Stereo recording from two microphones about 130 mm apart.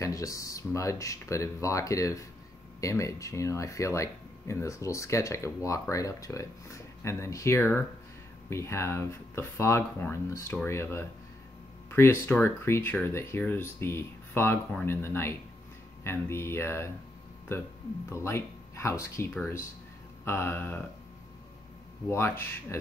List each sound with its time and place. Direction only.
0.0 s speech: 25° left (ahead or behind)
18.1 s speech: 20° left (ahead or behind)
22.1 s speech: 20° left (ahead or behind)